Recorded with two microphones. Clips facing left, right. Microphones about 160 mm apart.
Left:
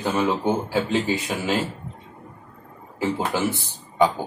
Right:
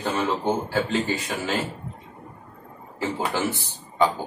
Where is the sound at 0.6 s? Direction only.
10° left (ahead or behind).